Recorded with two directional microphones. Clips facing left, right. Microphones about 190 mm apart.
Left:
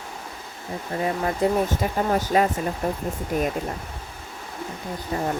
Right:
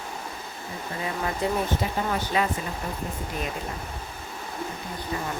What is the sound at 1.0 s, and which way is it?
Speech, 45° left (ahead or behind).